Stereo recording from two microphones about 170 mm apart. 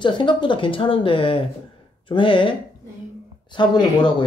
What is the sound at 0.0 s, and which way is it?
Speech, 30° left (ahead or behind).